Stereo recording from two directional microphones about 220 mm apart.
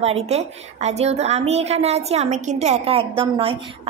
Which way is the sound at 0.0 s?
30° right (ahead or behind).